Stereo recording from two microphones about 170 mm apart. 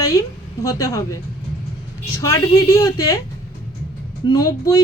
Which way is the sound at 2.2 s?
20° left (ahead or behind).